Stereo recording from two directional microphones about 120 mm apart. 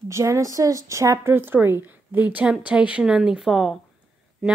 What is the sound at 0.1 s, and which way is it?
Speech, 25° right (ahead or behind).